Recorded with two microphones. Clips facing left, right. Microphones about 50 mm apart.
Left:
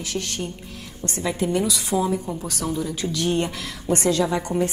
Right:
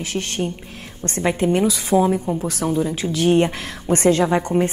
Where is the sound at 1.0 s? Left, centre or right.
Right.